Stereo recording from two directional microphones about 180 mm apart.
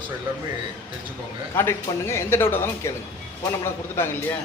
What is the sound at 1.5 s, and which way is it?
Speech, 15° left (ahead or behind).